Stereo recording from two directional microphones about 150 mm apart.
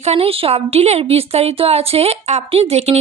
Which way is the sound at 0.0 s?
40° right (ahead or behind).